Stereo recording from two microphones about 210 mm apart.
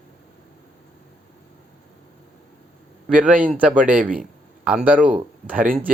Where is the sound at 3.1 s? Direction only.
5° right (ahead or behind).